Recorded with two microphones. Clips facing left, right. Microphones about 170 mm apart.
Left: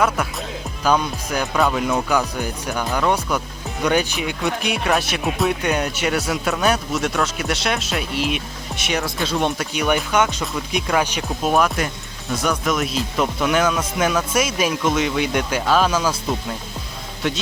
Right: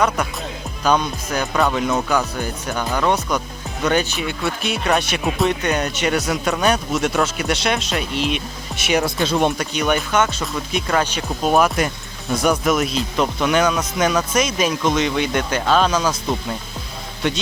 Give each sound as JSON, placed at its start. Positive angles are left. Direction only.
{"t": 0.9, "sound": "speech", "side_deg": 10}
{"t": 4.9, "sound": "speech", "side_deg": 0}
{"t": 9.0, "sound": "speech", "side_deg": -15}
{"t": 9.6, "sound": "speech", "side_deg": 10}
{"t": 12.4, "sound": "speech", "side_deg": -10}
{"t": 17.2, "sound": "speech", "side_deg": 0}